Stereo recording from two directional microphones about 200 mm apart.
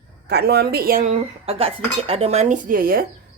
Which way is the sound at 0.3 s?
55° right (ahead or behind).